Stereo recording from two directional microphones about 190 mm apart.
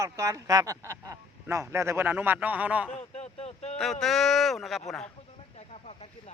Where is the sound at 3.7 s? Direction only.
Centre (ahead or behind).